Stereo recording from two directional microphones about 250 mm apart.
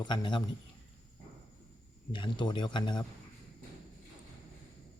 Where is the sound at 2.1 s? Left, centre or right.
Centre.